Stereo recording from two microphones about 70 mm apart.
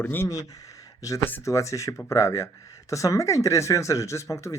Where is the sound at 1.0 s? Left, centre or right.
Left.